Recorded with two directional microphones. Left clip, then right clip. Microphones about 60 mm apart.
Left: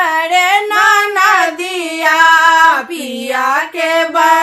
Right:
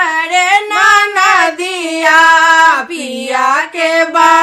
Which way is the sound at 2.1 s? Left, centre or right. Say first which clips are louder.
Right 1 dB; left.